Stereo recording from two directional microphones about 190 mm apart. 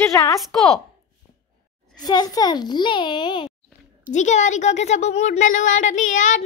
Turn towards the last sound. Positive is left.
turn(degrees=40)  # may be behind; listen again after turning